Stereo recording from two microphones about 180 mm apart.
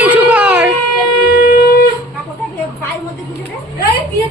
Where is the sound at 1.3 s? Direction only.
55° left (ahead or behind).